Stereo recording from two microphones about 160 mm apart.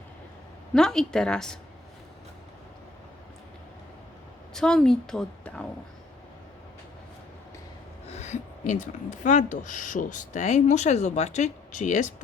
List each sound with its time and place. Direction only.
0.7 s a woman's voice: 5° left (ahead or behind)
4.5 s a woman's voice: 5° left (ahead or behind)
8.1 s speech: 45° left (ahead or behind)